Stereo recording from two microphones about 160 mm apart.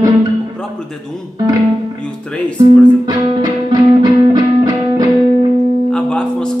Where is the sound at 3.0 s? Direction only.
25° right (ahead or behind).